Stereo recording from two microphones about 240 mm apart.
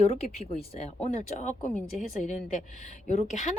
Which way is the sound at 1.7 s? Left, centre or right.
Centre.